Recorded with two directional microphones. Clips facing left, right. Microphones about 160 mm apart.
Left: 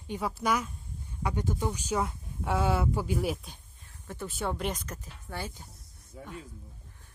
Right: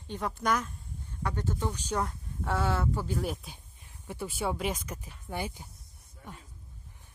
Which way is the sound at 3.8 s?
10° right (ahead or behind).